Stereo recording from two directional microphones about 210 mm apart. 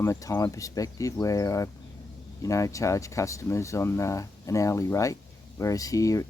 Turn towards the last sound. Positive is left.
turn(degrees=15)  # may be behind; listen again after turning